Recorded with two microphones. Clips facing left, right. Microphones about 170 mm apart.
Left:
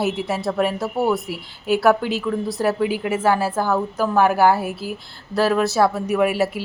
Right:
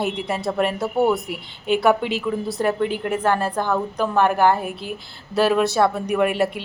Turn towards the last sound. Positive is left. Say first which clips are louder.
# left 1 dB
turn(degrees=5)  # may be behind; listen again after turning